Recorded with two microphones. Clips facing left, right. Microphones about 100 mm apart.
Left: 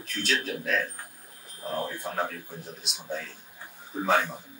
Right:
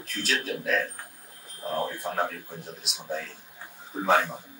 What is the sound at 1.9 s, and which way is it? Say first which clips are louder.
Speech: right 2 dB; centre (ahead or behind).